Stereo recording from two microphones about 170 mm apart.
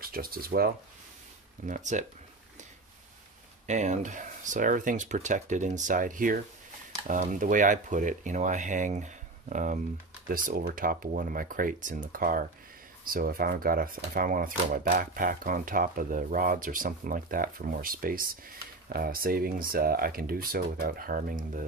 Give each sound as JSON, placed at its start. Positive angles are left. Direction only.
{"t": 0.0, "sound": "speech", "side_deg": -60}
{"t": 1.7, "sound": "speech", "side_deg": -45}
{"t": 3.6, "sound": "speech", "side_deg": -45}